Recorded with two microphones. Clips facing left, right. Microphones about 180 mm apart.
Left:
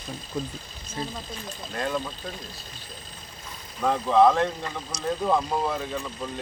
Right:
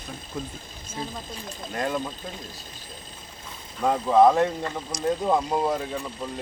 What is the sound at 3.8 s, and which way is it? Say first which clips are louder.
Speech: right 1 dB; 10° right (ahead or behind).